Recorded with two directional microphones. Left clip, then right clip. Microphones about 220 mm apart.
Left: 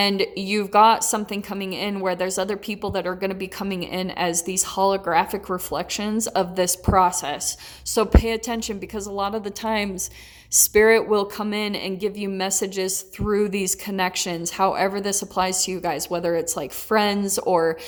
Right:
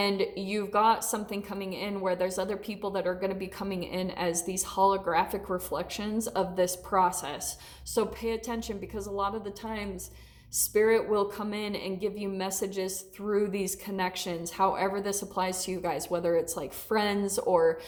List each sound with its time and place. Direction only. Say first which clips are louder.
0.0 s a woman's voice: left 7 dB; 30° left (ahead or behind)